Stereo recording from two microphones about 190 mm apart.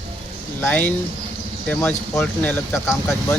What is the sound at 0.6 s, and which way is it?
Speech, 10° left (ahead or behind).